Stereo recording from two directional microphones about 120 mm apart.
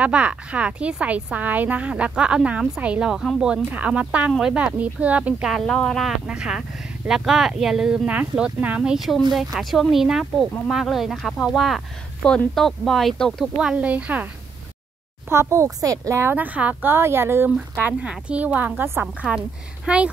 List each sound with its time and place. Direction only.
0.0 s a woman's voice: 10° right (ahead or behind)
5.5 s speech: centre (ahead or behind)
13.6 s a woman's voice: 10° right (ahead or behind)
15.2 s speech: 25° right (ahead or behind)
17.6 s a woman's voice: 10° right (ahead or behind)